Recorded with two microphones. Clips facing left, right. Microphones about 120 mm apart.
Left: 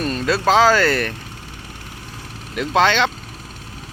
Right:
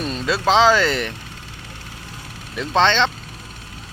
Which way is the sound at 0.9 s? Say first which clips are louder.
Left 3 dB; 15° right (ahead or behind).